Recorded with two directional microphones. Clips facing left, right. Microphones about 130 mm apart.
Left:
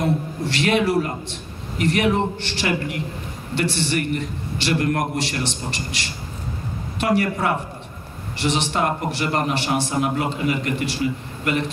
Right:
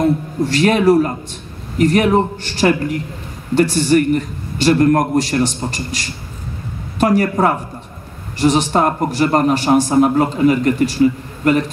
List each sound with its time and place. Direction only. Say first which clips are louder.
0.5 s a man's voice: right 7 dB; 40° right (ahead or behind)